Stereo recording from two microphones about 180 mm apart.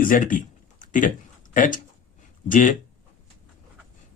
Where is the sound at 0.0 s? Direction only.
50° left (ahead or behind).